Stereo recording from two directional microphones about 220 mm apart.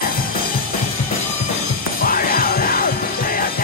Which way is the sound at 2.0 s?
40° left (ahead or behind).